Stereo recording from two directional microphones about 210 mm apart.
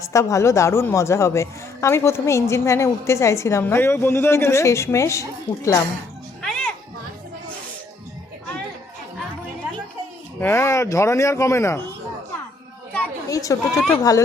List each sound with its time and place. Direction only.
0.0 s a woman's voice: 15° left (ahead or behind)
6.4 s music: 5° left (ahead or behind)
10.4 s a woman's voice: 10° left (ahead or behind)
12.9 s chatter: 10° left (ahead or behind)
13.7 s speech: 5° left (ahead or behind)